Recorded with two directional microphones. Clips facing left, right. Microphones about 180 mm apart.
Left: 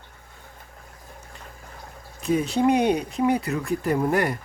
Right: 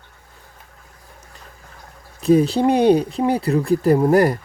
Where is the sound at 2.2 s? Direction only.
35° right (ahead or behind).